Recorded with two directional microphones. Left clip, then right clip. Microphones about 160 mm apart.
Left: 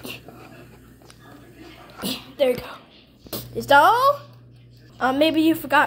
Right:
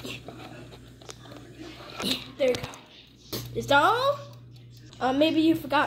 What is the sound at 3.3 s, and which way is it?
Speech, 20° left (ahead or behind).